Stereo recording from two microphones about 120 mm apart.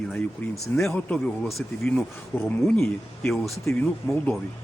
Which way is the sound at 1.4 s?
Centre (ahead or behind).